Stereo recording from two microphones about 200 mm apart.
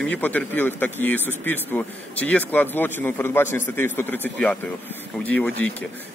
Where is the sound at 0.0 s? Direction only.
5° left (ahead or behind).